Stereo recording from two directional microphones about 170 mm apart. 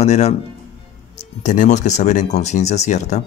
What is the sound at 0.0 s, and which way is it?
Speech, 40° left (ahead or behind).